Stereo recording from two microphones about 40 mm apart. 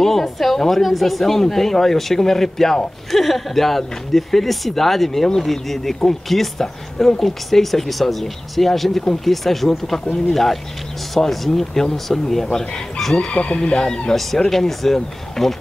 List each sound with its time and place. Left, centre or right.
0.0 s speech: centre
12.5 s chicken: centre
13.3 s speech: left
14.1 s speech: centre